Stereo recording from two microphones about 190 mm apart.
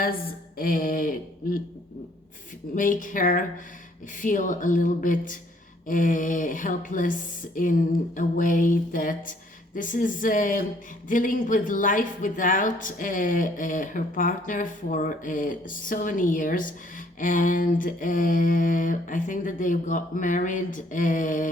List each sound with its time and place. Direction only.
0.5 s a woman's voice: 50° left (ahead or behind)
2.7 s a woman's voice: 45° left (ahead or behind)